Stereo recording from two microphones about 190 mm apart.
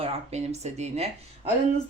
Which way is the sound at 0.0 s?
35° right (ahead or behind).